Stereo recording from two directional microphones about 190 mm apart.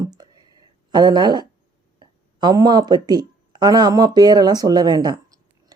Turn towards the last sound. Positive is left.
turn(degrees=-20)  # may be behind; listen again after turning